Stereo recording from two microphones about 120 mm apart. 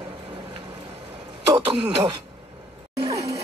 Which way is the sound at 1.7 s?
45° right (ahead or behind).